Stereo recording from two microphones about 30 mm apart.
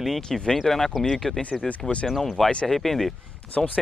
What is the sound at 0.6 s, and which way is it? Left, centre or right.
Speech, centre.